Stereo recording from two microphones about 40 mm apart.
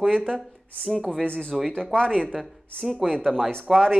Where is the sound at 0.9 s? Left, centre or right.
Centre.